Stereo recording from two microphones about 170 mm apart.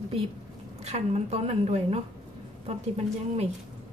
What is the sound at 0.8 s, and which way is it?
A woman's voice, 40° right (ahead or behind).